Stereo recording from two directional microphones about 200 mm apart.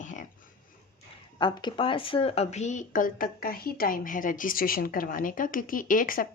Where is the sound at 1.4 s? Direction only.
25° left (ahead or behind).